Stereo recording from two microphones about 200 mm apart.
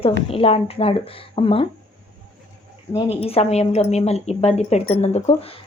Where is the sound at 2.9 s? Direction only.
30° left (ahead or behind).